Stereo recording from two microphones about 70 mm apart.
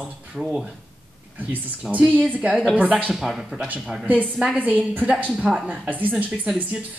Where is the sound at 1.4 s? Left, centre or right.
Right.